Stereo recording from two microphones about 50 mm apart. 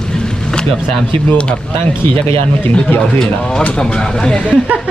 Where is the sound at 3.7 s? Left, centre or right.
Centre.